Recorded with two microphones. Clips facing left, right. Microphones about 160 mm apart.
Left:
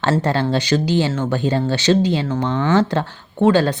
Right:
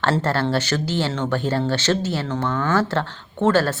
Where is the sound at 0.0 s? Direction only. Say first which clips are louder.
Left 2 dB; 15° left (ahead or behind).